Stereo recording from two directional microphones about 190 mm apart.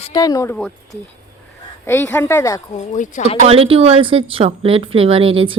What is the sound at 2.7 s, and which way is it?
Speech, 40° left (ahead or behind).